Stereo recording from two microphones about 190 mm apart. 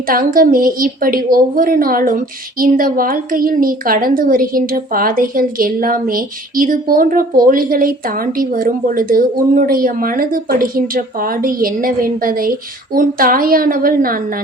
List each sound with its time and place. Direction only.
0.1 s a woman's voice: 50° right (ahead or behind)